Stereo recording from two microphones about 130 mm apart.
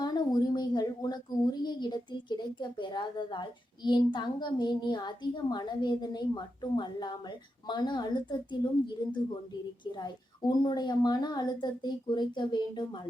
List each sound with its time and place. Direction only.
0.0 s a woman's voice: 30° left (ahead or behind)